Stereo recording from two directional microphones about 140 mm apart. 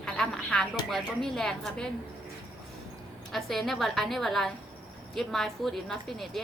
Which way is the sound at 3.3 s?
Centre (ahead or behind).